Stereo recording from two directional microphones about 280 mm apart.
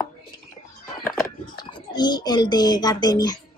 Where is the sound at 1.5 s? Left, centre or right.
Centre.